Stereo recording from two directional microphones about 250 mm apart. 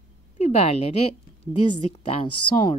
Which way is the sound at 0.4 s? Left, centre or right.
Left.